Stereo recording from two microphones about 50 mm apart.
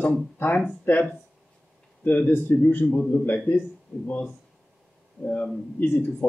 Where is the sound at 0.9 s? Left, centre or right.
Left.